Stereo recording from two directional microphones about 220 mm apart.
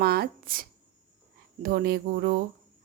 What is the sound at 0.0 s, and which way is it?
A woman's voice, 45° right (ahead or behind).